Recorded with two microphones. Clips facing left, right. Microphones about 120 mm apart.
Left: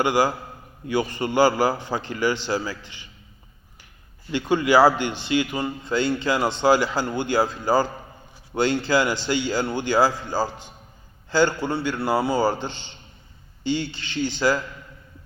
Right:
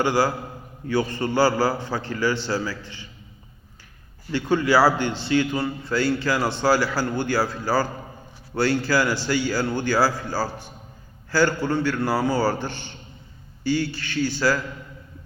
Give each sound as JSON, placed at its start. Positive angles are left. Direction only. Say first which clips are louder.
{"t": 0.0, "sound": "a man's voice", "louder": "even", "side_deg": 15}
{"t": 4.3, "sound": "a man's voice", "louder": "left 1 dB", "side_deg": 15}